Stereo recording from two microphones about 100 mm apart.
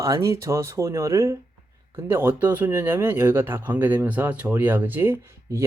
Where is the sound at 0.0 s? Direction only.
35° right (ahead or behind).